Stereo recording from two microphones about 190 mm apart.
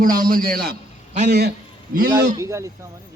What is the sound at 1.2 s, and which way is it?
Speech, 60° right (ahead or behind).